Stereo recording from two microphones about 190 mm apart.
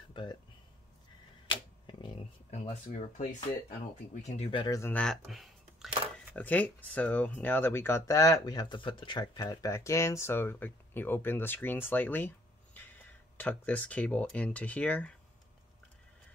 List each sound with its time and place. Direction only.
0.1 s speech: 25° left (ahead or behind)
1.5 s a sound: 25° left (ahead or behind)
4.1 s speech: 40° left (ahead or behind)
4.5 s speech: 20° left (ahead or behind); by 15.1 s 5° left (ahead or behind)